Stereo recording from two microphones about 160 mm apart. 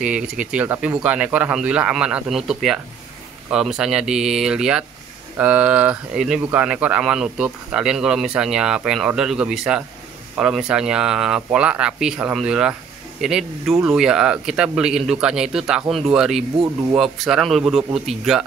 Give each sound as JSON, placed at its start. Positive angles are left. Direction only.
{"t": 0.0, "sound": "speech", "side_deg": -5}